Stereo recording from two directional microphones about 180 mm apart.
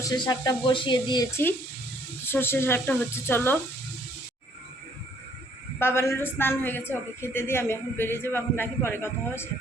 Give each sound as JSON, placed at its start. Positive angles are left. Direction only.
{"t": 0.0, "sound": "speech", "side_deg": 20}
{"t": 2.2, "sound": "a woman's voice", "side_deg": 10}
{"t": 5.8, "sound": "a woman's voice", "side_deg": 15}